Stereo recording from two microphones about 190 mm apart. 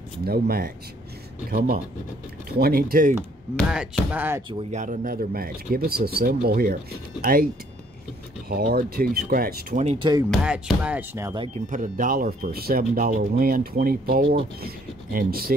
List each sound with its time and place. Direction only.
0.2 s speech: 55° right (ahead or behind)
2.6 s speech: 50° right (ahead or behind)
3.5 s speech: centre (ahead or behind)
4.5 s speech: 35° right (ahead or behind)
8.7 s speech: 50° right (ahead or behind)
9.8 s speech: 25° right (ahead or behind)
10.3 s speech: 5° right (ahead or behind)
11.3 s speech: 30° right (ahead or behind)
11.7 s speech: 45° right (ahead or behind)